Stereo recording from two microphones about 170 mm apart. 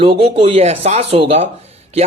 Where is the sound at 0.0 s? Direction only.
35° right (ahead or behind).